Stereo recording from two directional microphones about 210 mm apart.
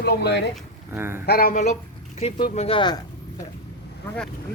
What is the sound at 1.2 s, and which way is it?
Speech, 45° left (ahead or behind).